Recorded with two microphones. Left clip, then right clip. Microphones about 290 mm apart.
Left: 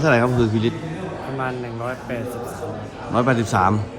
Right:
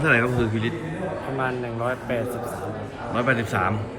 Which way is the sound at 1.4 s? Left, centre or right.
Centre.